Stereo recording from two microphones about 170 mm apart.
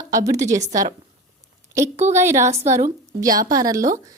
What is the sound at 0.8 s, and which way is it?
Speech, 20° right (ahead or behind).